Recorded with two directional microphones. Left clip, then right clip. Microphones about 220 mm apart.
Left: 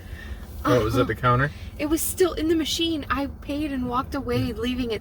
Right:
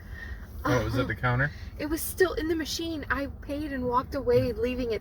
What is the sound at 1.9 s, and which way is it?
Speech, 15° left (ahead or behind).